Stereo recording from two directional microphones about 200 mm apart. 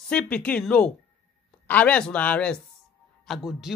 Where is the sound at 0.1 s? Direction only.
5° left (ahead or behind).